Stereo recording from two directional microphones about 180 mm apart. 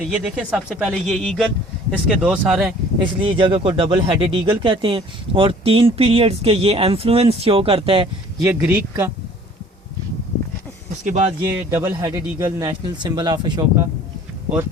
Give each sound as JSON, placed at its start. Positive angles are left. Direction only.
{"t": 0.0, "sound": "speech", "side_deg": -5}
{"t": 3.0, "sound": "speech", "side_deg": -30}
{"t": 8.4, "sound": "speech", "side_deg": -10}
{"t": 11.0, "sound": "speech", "side_deg": -40}
{"t": 11.4, "sound": "speech", "side_deg": -15}